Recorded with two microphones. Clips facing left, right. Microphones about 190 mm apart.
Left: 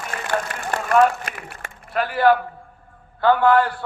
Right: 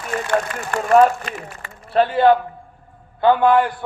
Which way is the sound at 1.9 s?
25° right (ahead or behind).